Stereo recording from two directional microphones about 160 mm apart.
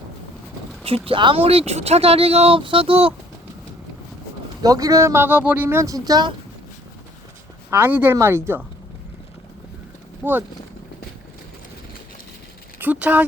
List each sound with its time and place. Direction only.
0.9 s speech: 35° right (ahead or behind)
4.6 s speech: 20° right (ahead or behind)
7.7 s speech: 10° right (ahead or behind)
10.2 s speech: 10° right (ahead or behind)
12.8 s speech: 10° right (ahead or behind)